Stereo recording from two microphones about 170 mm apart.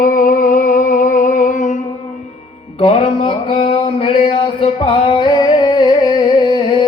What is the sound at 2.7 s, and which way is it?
Music, 35° left (ahead or behind).